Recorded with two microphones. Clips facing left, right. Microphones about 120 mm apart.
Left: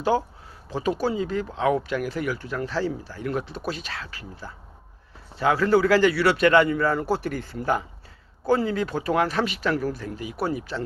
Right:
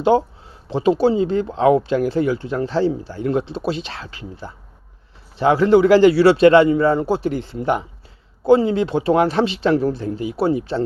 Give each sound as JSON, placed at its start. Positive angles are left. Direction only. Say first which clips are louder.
{"t": 0.0, "sound": "speech", "louder": "right 7 dB", "side_deg": -25}